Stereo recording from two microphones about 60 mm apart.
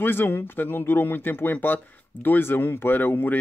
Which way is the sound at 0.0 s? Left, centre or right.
Left.